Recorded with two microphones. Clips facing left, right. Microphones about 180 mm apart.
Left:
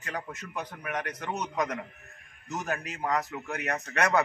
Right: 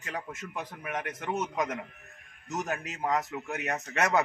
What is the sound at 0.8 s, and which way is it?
Speech, 20° right (ahead or behind).